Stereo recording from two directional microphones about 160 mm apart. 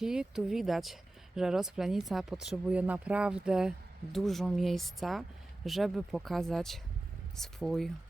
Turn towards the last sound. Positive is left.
turn(degrees=0)  # may be behind; listen again after turning